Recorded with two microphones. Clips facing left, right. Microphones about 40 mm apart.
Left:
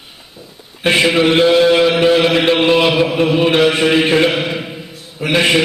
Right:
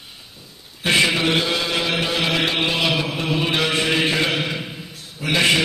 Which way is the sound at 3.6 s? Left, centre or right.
Centre.